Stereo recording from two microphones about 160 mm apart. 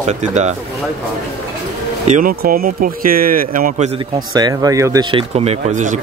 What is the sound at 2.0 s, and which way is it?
Speech, 55° right (ahead or behind).